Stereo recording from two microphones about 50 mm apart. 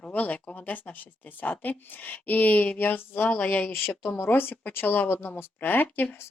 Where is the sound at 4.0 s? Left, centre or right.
Left.